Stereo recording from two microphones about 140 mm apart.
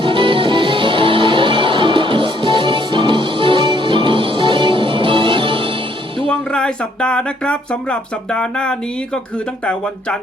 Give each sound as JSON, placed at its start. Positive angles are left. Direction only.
{"t": 0.0, "sound": "music", "side_deg": -35}
{"t": 6.2, "sound": "speech", "side_deg": 5}